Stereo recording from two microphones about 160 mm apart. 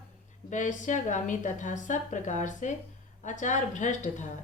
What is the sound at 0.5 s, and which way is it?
A woman's voice, 50° left (ahead or behind).